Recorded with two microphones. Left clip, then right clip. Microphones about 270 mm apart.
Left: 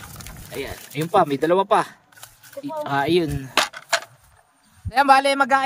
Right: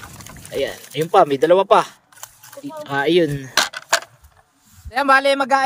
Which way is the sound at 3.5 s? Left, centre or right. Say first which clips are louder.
Even; right.